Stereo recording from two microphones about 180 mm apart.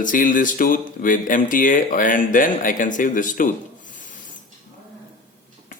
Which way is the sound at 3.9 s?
45° left (ahead or behind).